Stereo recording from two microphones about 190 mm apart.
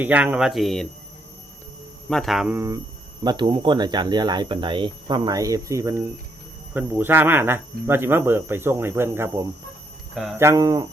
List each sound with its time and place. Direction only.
0.0 s speech: 10° right (ahead or behind)
2.0 s speech: centre (ahead or behind); by 10.8 s 20° right (ahead or behind)